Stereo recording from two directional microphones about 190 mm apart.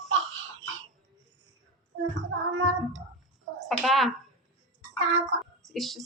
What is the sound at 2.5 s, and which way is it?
Speech, 90° right.